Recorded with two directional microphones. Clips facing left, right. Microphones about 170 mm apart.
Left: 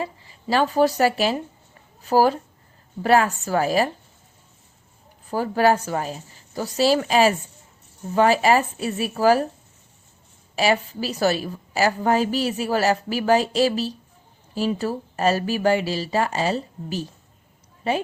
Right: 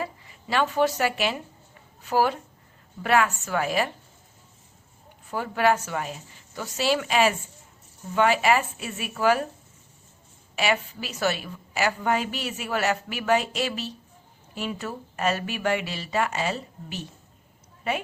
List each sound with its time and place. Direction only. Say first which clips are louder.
0.0 s a woman's voice: left 3 dB; 35° left (ahead or behind)
5.3 s a woman's voice: left 4 dB; 35° left (ahead or behind)
10.5 s a woman's voice: left 5 dB; 35° left (ahead or behind)